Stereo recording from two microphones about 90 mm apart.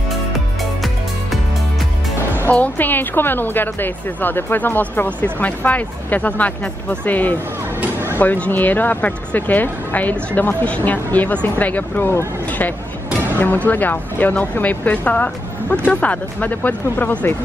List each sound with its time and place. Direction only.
0.6 s music: centre (ahead or behind)
2.4 s a woman's voice: 20° left (ahead or behind)
7.8 s a sound: 25° right (ahead or behind)
8.2 s a woman's voice: 20° left (ahead or behind)
12.4 s a sound: 20° left (ahead or behind)
13.7 s a woman's voice: 20° left (ahead or behind)